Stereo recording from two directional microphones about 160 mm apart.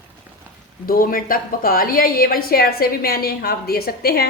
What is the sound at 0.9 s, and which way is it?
A woman's voice, 65° left (ahead or behind).